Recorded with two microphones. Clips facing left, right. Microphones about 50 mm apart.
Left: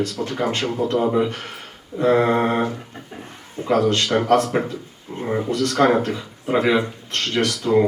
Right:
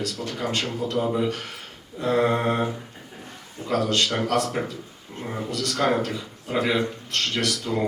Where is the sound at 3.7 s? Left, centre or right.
Left.